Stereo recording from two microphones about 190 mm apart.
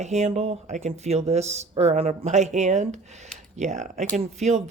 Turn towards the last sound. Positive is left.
turn(degrees=-35)  # may be behind; listen again after turning